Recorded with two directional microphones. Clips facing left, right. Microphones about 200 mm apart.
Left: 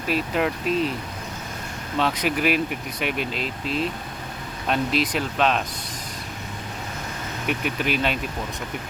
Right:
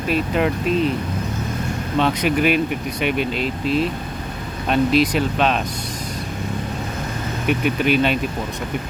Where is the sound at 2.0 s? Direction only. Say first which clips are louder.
Right 4 dB; centre (ahead or behind).